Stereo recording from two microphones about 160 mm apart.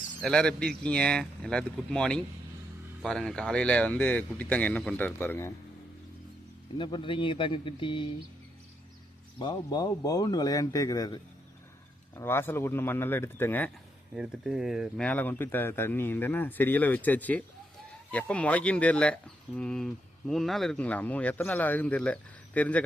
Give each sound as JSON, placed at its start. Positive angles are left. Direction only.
{"t": 0.2, "sound": "speech", "side_deg": 5}
{"t": 6.7, "sound": "a man's voice", "side_deg": 30}
{"t": 9.4, "sound": "speech", "side_deg": 25}
{"t": 14.2, "sound": "speech", "side_deg": -5}